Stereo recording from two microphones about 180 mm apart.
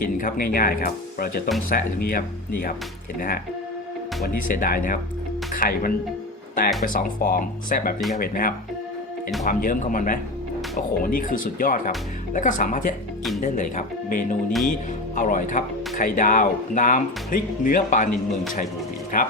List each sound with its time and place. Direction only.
0.0 s speech: 50° left (ahead or behind)
19.1 s speech: 50° left (ahead or behind)